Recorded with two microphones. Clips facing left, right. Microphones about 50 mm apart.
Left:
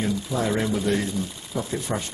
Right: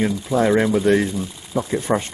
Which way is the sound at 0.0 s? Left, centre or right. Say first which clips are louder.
Right 7 dB; right.